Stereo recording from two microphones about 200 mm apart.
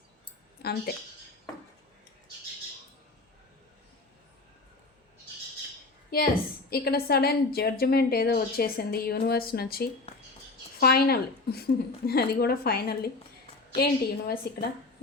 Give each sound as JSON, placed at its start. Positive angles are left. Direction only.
{"t": 6.1, "sound": "a woman's voice", "side_deg": 50}